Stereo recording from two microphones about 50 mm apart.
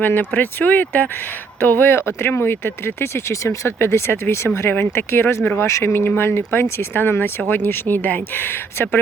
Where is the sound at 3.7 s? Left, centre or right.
Left.